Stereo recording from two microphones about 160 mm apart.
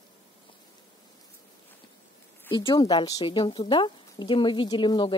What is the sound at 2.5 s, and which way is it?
Speech, 30° left (ahead or behind).